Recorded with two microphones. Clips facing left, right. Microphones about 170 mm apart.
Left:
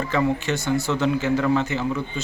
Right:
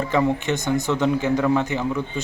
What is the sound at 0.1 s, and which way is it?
Speech, 15° right (ahead or behind).